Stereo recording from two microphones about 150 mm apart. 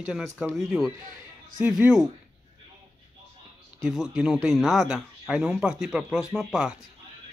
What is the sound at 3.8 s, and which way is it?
Speech, 5° right (ahead or behind).